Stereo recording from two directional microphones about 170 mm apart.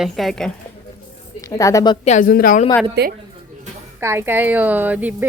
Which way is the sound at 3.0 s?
85° right.